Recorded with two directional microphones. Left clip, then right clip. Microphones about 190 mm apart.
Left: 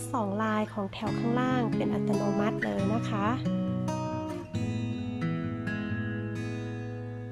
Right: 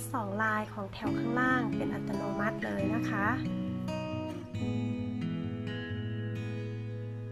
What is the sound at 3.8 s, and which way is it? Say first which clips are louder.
Music: left 1 dB; 20° right (ahead or behind).